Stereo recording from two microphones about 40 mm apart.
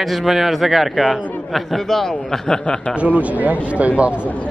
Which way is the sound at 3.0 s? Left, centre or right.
Right.